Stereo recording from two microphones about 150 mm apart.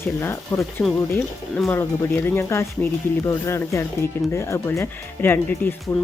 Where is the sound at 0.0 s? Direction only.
15° left (ahead or behind).